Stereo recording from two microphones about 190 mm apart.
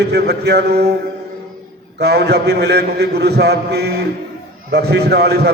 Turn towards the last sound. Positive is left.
turn(degrees=-60)  # may be behind; listen again after turning